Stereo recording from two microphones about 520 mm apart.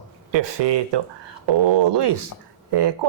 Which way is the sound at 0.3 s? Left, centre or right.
Right.